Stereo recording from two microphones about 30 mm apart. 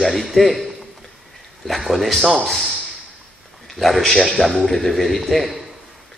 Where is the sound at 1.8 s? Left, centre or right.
Centre.